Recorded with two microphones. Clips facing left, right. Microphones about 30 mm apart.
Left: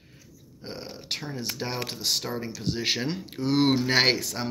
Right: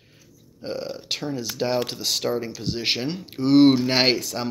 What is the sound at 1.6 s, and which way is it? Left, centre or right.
Speech, right.